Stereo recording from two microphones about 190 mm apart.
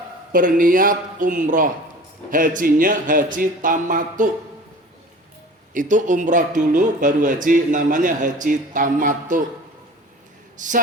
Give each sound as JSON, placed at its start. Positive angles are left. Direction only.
{"t": 0.3, "sound": "speech", "side_deg": -45}
{"t": 5.7, "sound": "speech", "side_deg": -40}
{"t": 10.6, "sound": "speech", "side_deg": -40}